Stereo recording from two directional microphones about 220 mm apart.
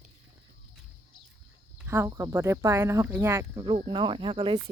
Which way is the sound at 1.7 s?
10° right (ahead or behind).